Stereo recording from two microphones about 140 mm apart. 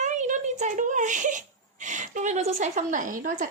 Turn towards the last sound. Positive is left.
turn(degrees=-70)  # may be behind; listen again after turning